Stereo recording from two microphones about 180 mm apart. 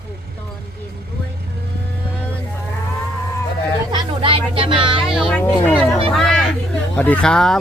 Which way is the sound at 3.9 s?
30° right (ahead or behind).